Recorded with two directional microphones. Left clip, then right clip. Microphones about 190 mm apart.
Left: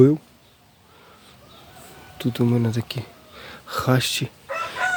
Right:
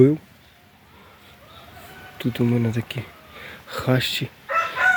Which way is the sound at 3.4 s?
5° left (ahead or behind).